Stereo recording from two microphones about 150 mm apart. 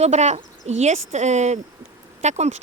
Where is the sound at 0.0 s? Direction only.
50° right (ahead or behind).